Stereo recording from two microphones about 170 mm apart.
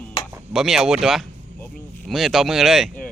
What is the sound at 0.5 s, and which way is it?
Speech, centre (ahead or behind).